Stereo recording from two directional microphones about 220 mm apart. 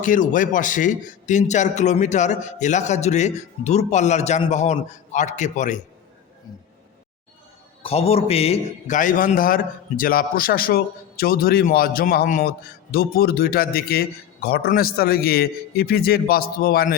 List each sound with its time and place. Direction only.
0.0 s a man's voice: 40° left (ahead or behind)
7.8 s a man's voice: 25° left (ahead or behind); by 17.0 s 45° left (ahead or behind)